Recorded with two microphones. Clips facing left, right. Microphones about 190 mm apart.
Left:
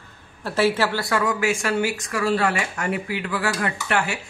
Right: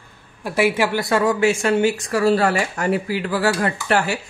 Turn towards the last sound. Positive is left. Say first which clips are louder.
# right 4 dB
turn(degrees=-35)  # may be behind; listen again after turning